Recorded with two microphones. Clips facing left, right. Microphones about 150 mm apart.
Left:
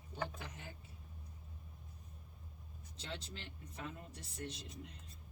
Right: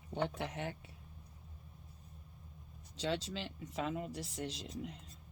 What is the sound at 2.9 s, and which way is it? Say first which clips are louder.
Speech: right 11 dB; 90° right.